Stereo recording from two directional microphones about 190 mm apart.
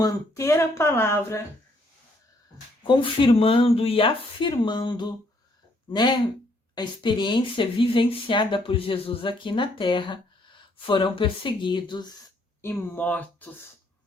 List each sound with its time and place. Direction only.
0.0 s speech: 15° left (ahead or behind)
2.8 s speech: 25° left (ahead or behind)
12.6 s speech: 10° left (ahead or behind)